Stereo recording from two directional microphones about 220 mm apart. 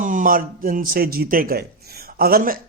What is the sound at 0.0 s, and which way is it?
Speech, 35° right (ahead or behind).